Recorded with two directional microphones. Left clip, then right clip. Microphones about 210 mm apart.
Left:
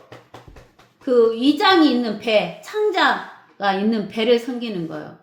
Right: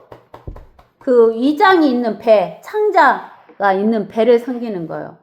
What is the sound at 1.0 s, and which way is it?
A woman's voice, 25° right (ahead or behind).